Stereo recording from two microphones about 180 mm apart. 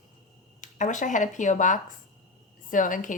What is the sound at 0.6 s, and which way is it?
A woman's voice, 45° left (ahead or behind).